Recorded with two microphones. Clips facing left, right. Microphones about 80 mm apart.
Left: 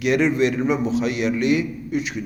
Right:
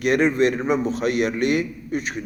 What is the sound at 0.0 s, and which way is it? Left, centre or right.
A man's voice, right.